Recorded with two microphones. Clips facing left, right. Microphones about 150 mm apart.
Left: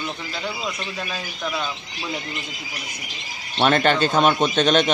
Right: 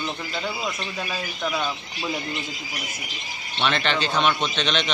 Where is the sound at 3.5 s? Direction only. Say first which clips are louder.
Left 6 dB; 45° left (ahead or behind).